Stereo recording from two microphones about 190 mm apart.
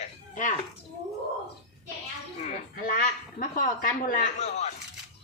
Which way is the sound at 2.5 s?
45° left (ahead or behind).